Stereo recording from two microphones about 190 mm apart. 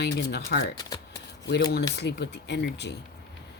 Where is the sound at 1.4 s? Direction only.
55° left (ahead or behind).